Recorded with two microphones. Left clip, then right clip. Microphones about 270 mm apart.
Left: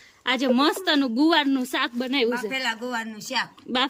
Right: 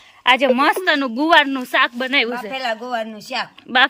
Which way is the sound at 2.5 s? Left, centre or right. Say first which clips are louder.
Right 4 dB; centre.